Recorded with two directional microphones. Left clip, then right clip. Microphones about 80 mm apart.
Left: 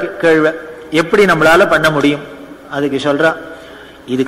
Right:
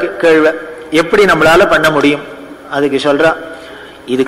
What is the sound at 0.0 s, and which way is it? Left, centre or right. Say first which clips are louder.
A man's voice: right 3 dB; right.